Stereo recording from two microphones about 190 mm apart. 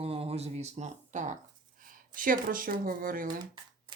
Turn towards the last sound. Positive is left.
turn(degrees=-45)  # may be behind; listen again after turning